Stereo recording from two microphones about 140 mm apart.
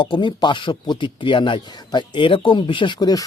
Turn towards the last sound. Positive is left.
turn(degrees=25)  # may be behind; listen again after turning